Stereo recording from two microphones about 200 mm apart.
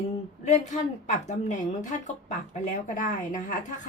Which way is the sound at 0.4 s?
35° left (ahead or behind).